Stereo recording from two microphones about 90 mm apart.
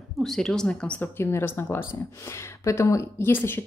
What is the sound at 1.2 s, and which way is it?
A woman's voice, 25° left (ahead or behind).